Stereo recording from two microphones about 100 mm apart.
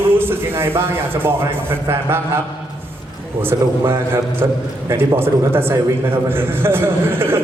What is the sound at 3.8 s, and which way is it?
A man's voice, 25° right (ahead or behind).